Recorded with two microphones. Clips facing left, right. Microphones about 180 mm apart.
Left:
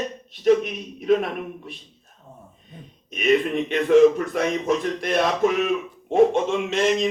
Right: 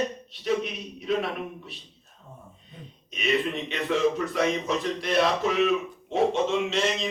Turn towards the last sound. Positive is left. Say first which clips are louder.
# left 5 dB
turn(degrees=50)  # may be behind; listen again after turning